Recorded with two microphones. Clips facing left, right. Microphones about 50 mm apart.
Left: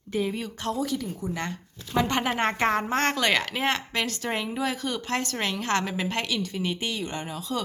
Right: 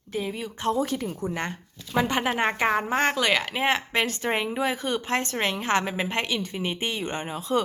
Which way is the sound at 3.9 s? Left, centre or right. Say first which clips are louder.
Right 3 dB; right.